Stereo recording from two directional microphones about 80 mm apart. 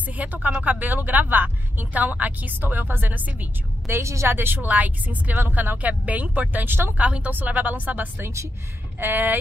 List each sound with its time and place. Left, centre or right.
0.2 s speech: centre
3.8 s speech: right